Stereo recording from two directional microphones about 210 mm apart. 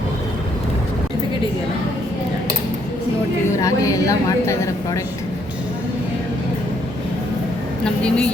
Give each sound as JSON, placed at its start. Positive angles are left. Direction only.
{"t": 3.6, "sound": "a woman's voice", "side_deg": 15}
{"t": 7.9, "sound": "a woman's voice", "side_deg": 5}